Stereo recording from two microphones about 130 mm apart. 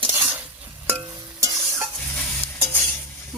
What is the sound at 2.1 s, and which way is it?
Stir, 15° left (ahead or behind).